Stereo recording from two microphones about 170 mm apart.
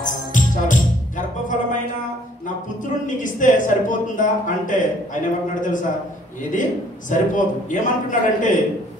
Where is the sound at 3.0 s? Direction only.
50° left (ahead or behind).